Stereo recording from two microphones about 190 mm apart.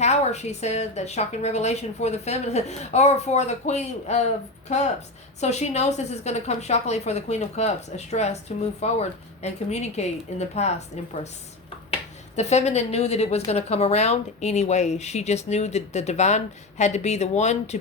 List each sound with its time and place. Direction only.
0.0 s speech: 35° left (ahead or behind)
12.4 s speech: 35° left (ahead or behind)